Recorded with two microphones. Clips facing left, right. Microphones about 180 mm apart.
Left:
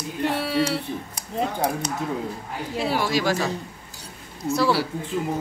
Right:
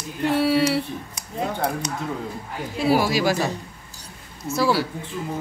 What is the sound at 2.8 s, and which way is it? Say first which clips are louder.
Speech: right 4 dB; 5° right (ahead or behind).